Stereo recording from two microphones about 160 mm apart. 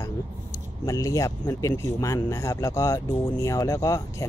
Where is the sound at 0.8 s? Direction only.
20° left (ahead or behind).